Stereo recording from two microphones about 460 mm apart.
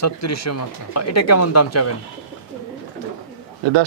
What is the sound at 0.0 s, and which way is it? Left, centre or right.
Speech, left.